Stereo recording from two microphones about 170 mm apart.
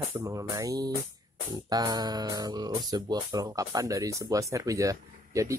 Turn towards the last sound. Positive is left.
turn(degrees=-20)  # may be behind; listen again after turning